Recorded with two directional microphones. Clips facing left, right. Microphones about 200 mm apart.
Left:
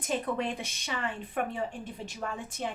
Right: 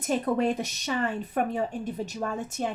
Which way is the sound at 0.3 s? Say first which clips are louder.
Right 7 dB; 40° right (ahead or behind).